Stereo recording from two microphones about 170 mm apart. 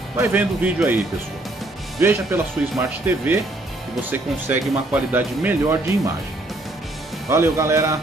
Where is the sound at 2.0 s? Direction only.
10° right (ahead or behind).